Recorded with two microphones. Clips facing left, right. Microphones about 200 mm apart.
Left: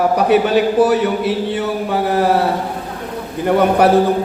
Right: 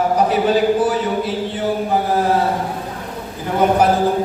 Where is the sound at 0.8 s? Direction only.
65° left (ahead or behind).